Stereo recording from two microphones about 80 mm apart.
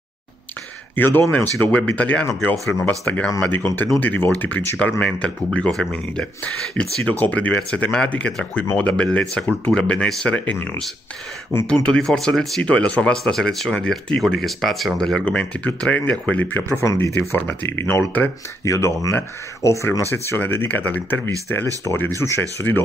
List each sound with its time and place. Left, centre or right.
0.9 s speech: left
2.5 s speech: centre
2.8 s speech: centre
11.8 s speech: centre; by 21.6 s left
22.2 s speech: left